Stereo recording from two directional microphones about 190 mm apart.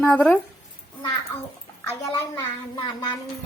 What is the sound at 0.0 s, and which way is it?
Speech, 5° left (ahead or behind).